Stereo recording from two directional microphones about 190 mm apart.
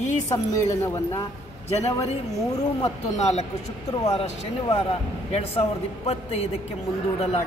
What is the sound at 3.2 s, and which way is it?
A man's voice, 35° left (ahead or behind).